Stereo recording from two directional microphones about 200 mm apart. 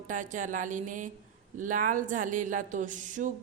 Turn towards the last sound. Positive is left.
turn(degrees=-40)  # may be behind; listen again after turning